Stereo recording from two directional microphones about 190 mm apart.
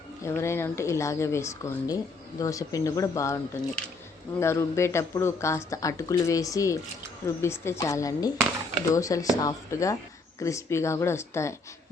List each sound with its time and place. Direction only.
0.3 s speech: 15° left (ahead or behind)